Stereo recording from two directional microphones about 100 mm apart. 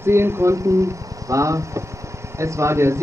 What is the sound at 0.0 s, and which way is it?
A man's voice, 25° right (ahead or behind).